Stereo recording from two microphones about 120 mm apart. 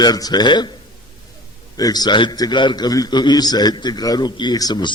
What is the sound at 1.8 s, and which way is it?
A man's voice, 35° left (ahead or behind).